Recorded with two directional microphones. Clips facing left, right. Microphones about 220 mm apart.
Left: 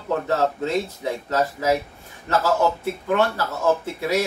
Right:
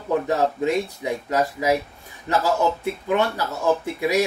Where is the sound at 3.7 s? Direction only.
15° right (ahead or behind).